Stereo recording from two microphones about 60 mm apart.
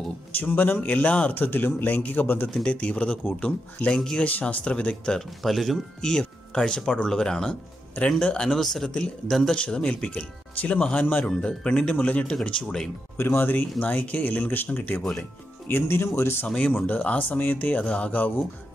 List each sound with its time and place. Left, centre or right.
0.4 s speech: left
1.4 s speech: left
2.5 s speech: centre
4.3 s speech: left
5.4 s speech: centre
8.5 s speech: centre
13.4 s speech: left
15.7 s speech: left
16.4 s speech: centre